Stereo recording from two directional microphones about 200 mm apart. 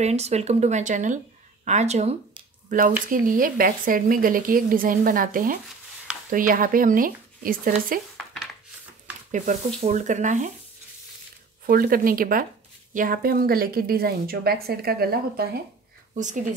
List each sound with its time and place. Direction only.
0.0 s a woman's voice: 35° right (ahead or behind)
9.8 s speech: 40° right (ahead or behind)
11.6 s a woman's voice: 45° right (ahead or behind)
16.2 s speech: 40° right (ahead or behind)